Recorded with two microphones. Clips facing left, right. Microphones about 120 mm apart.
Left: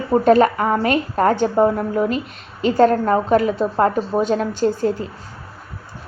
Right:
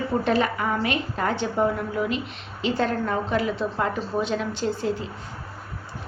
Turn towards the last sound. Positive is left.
turn(degrees=45)  # may be behind; listen again after turning